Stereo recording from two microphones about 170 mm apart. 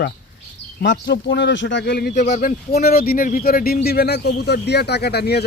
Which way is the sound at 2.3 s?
55° left (ahead or behind).